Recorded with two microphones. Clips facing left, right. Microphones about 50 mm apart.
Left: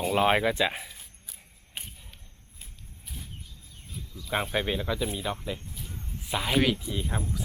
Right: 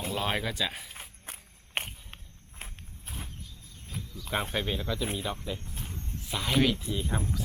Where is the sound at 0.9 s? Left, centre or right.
Right.